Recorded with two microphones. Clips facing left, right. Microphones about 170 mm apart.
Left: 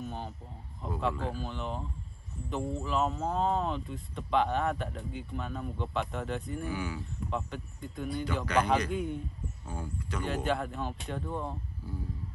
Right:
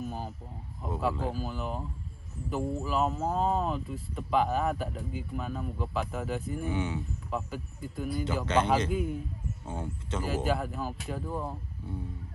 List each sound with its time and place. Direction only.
0.0 s a sound: 5° right (ahead or behind)
0.8 s speech: 5° right (ahead or behind)
6.7 s speech: 25° right (ahead or behind)
7.2 s speech: 5° right (ahead or behind)
9.7 s speech: 25° right (ahead or behind)
10.2 s speech: 5° right (ahead or behind)